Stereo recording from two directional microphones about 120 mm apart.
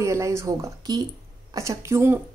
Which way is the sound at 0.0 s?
25° right (ahead or behind).